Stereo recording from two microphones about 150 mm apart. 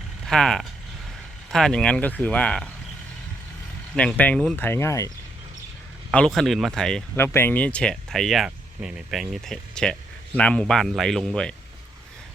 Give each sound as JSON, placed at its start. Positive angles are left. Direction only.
{"t": 0.3, "sound": "speech", "side_deg": 5}
{"t": 3.9, "sound": "speech", "side_deg": 10}
{"t": 6.1, "sound": "speech", "side_deg": 5}
{"t": 7.2, "sound": "speech", "side_deg": 15}